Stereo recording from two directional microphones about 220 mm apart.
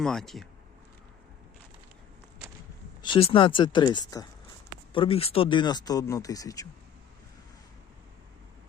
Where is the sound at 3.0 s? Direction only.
25° left (ahead or behind).